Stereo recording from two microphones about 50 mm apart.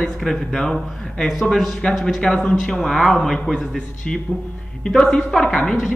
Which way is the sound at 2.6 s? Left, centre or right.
Centre.